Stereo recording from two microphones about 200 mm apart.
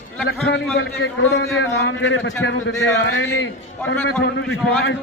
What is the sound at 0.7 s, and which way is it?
A man's voice, 60° left (ahead or behind).